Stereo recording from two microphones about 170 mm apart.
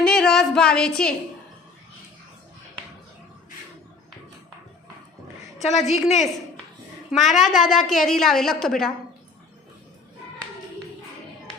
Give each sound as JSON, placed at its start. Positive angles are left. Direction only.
{"t": 0.1, "sound": "a sound", "side_deg": 5}
{"t": 5.9, "sound": "a woman's voice", "side_deg": 45}
{"t": 7.1, "sound": "a woman's voice", "side_deg": 0}